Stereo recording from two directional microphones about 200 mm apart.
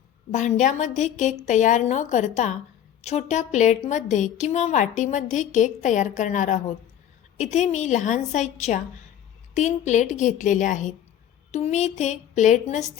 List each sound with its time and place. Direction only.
0.3 s a woman's voice: 35° left (ahead or behind)
9.6 s a woman's voice: 35° left (ahead or behind)